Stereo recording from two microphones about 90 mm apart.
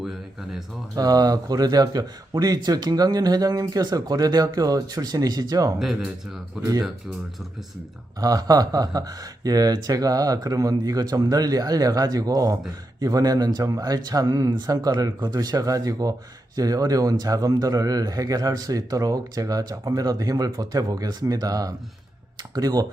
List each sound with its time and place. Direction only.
0.9 s speech: 45° right (ahead or behind)
5.8 s speech: 5° right (ahead or behind)
8.2 s speech: 45° right (ahead or behind)